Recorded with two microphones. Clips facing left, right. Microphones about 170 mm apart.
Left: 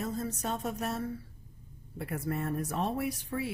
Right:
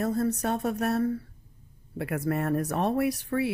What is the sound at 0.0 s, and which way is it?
A woman's voice, 65° right (ahead or behind).